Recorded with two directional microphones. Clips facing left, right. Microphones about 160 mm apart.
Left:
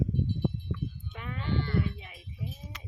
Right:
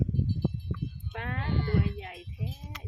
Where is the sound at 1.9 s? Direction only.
70° right (ahead or behind).